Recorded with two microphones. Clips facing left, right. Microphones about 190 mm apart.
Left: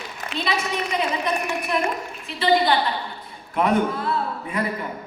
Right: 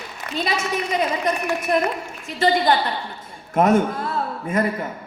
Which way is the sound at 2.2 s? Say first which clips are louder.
Right 1 dB; 45° right (ahead or behind).